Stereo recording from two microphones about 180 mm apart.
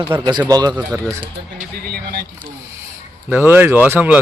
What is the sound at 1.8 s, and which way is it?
Speech, 60° right (ahead or behind).